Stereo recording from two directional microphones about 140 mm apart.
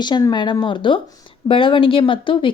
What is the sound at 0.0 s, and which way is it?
Speech, 30° left (ahead or behind).